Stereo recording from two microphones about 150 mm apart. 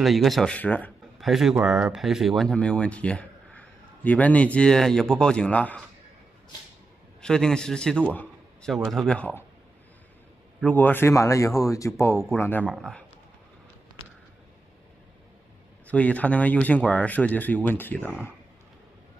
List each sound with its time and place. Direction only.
0.0 s speech: centre (ahead or behind)
1.1 s speech: centre (ahead or behind)
7.2 s speech: 5° left (ahead or behind)
8.1 s a sound: 10° left (ahead or behind)
8.7 s speech: centre (ahead or behind)
10.6 s speech: 10° left (ahead or behind)
15.9 s speech: 10° left (ahead or behind)